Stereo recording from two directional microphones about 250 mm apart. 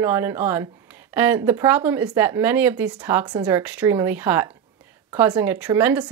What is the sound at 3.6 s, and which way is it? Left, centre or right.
Speech, centre.